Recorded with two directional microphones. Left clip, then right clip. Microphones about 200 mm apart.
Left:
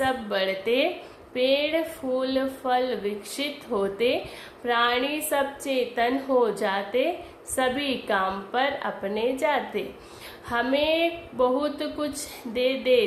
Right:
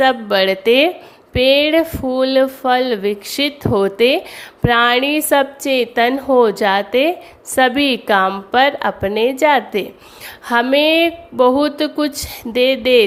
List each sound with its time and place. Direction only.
0.0 s a woman's voice: 50° right (ahead or behind)